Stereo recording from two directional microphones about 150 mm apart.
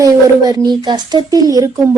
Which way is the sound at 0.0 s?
25° right (ahead or behind).